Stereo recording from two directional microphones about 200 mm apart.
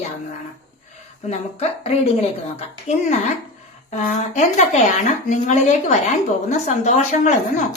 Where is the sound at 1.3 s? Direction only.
30° left (ahead or behind).